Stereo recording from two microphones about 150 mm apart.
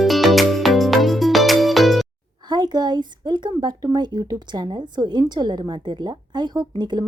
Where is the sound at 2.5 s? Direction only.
30° right (ahead or behind).